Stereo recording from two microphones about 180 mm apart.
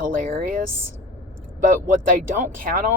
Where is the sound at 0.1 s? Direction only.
50° right (ahead or behind).